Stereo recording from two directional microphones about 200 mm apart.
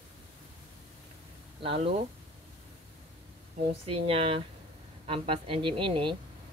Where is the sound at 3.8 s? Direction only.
30° right (ahead or behind).